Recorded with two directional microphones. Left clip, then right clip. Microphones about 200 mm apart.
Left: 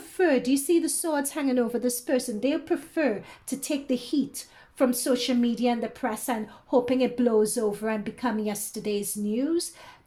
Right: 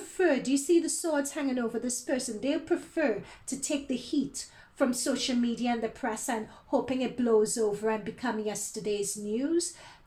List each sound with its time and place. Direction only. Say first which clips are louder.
0.2 s a woman's voice: left 3 dB; 40° left (ahead or behind)